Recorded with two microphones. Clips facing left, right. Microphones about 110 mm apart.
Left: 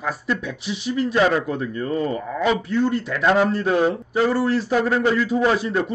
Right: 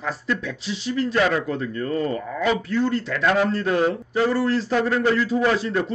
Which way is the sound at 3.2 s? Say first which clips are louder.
Left 3 dB; 25° left (ahead or behind).